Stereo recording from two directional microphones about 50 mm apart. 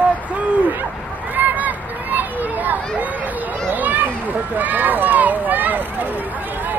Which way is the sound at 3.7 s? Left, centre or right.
Right.